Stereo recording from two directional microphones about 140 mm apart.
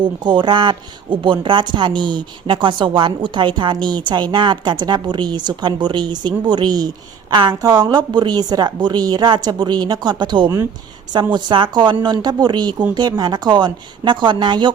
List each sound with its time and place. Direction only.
0.0 s speech: 35° right (ahead or behind)